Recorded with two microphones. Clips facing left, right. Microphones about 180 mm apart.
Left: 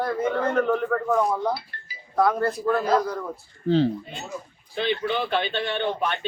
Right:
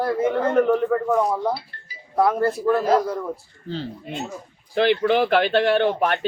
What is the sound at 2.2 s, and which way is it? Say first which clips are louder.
Speech: right 2 dB; 5° right (ahead or behind).